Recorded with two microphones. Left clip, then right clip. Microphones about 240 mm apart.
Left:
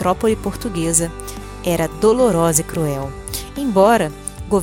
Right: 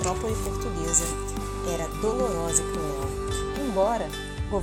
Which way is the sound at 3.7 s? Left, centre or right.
Left.